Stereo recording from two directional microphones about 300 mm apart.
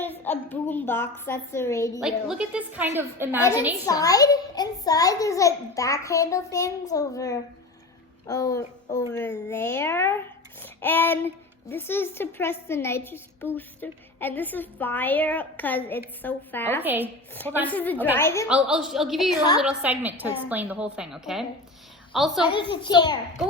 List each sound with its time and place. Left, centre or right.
0.0 s a woman's voice: centre
2.0 s a woman's voice: centre
3.8 s a woman's voice: centre
16.8 s a woman's voice: centre
17.7 s a woman's voice: centre
17.9 s a woman's voice: centre
18.2 s a woman's voice: centre
18.4 s a woman's voice: centre
19.4 s a woman's voice: centre
19.6 s a woman's voice: centre
22.4 s a woman's voice: centre